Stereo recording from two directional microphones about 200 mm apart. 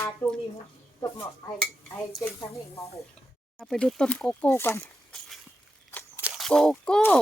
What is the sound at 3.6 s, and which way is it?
Speech, centre (ahead or behind).